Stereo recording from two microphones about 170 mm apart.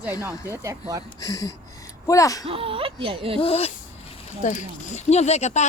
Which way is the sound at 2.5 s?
35° right (ahead or behind).